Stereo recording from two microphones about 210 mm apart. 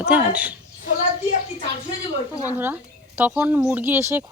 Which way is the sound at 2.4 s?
10° right (ahead or behind).